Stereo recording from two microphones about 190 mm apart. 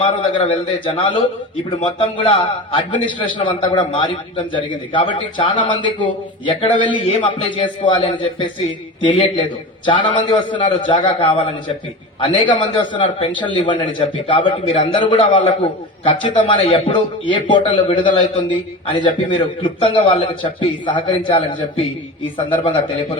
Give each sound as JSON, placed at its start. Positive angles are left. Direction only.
{"t": 0.0, "sound": "a man's voice", "side_deg": 25}
{"t": 22.5, "sound": "a man's voice", "side_deg": 30}